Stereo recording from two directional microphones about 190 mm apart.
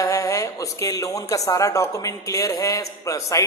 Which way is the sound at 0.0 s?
15° left (ahead or behind).